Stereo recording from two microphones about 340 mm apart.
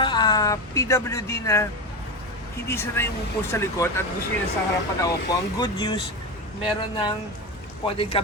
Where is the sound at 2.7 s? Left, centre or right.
Centre.